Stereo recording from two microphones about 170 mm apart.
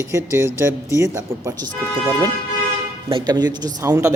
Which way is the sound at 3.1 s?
30° right (ahead or behind).